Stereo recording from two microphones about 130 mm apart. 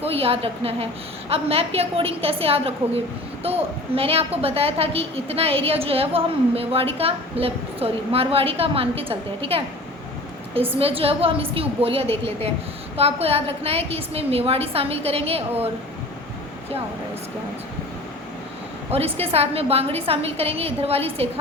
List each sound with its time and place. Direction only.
0.0 s a woman's voice: 50° right (ahead or behind)
10.8 s a woman's voice: 45° right (ahead or behind)
18.9 s a woman's voice: 50° right (ahead or behind)